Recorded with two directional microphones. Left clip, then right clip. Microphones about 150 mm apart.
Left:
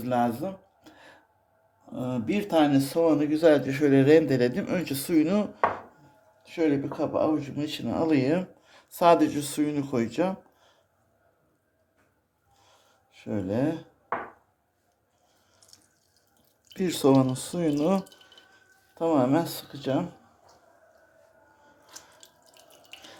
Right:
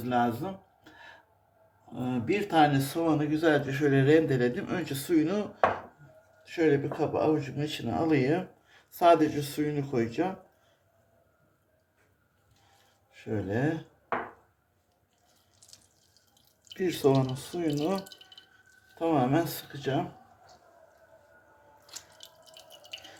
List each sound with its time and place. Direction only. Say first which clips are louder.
0.0 s a sound: left 2 dB; 50° left (ahead or behind)
2.0 s speech: even; 50° left (ahead or behind)
13.1 s speech: left 3 dB; 40° left (ahead or behind)
15.6 s drip: right 1 dB; centre (ahead or behind)
16.7 s speech: left 3 dB; 60° left (ahead or behind)
18.9 s speech: left 3 dB; 40° left (ahead or behind)
21.9 s drip: right 2 dB; 10° right (ahead or behind)